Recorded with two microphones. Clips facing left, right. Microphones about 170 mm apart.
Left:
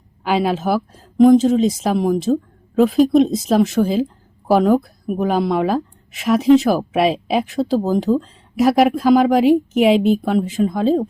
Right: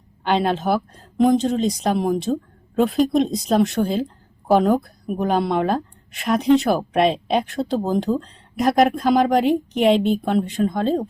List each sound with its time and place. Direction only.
0.3 s speech: 5° left (ahead or behind)